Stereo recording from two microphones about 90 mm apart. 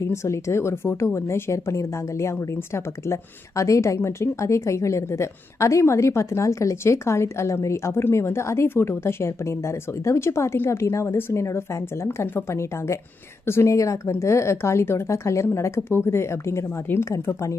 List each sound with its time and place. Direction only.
0.1 s a woman's voice: 35° left (ahead or behind)